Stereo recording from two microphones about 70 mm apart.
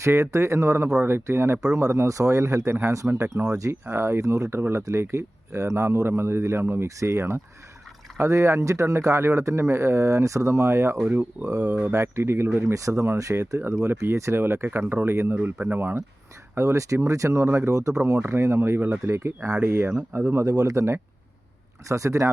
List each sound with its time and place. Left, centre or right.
0.0 s a man's voice: right
1.8 s a man's voice: right
3.3 s a man's voice: right
6.8 s a man's voice: right
11.0 s speech: right
11.9 s a man's voice: right
16.6 s a man's voice: right
18.2 s a man's voice: right
20.4 s a man's voice: right
21.8 s a man's voice: right